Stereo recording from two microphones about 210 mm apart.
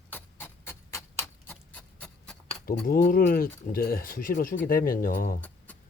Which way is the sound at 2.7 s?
45° left (ahead or behind).